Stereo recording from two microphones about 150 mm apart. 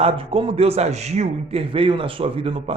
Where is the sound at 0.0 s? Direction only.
40° right (ahead or behind).